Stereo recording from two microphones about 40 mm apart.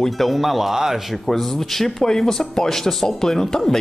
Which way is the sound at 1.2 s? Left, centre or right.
Centre.